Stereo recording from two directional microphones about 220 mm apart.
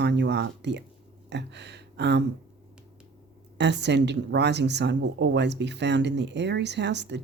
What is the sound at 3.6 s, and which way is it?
Speech, 50° right (ahead or behind).